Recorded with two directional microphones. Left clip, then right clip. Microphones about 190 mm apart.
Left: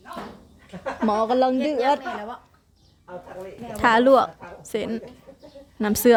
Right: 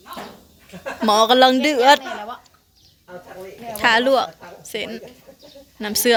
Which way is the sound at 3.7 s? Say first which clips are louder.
Even; 25° left (ahead or behind).